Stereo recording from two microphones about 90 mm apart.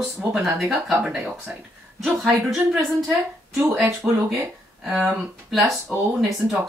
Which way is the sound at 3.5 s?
20° right (ahead or behind).